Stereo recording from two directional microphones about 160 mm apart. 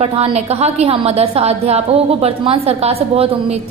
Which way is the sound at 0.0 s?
40° right (ahead or behind).